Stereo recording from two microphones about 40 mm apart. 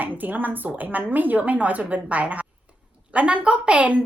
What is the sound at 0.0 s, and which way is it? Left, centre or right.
A woman's voice, right.